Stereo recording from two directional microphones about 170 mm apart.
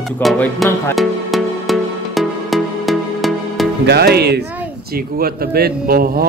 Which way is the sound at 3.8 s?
70° right (ahead or behind).